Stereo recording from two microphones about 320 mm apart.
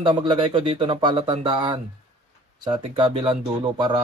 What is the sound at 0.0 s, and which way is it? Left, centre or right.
Speech, centre.